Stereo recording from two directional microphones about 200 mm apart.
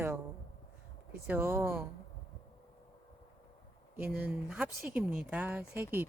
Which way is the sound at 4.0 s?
10° right (ahead or behind).